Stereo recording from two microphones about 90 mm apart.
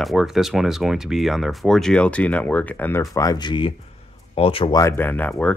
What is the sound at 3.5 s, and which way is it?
Speech, 70° left (ahead or behind).